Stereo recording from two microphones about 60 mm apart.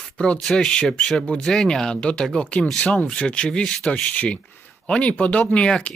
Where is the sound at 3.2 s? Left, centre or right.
Centre.